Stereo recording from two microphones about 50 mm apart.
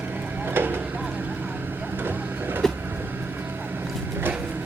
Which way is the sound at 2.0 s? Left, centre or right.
Right.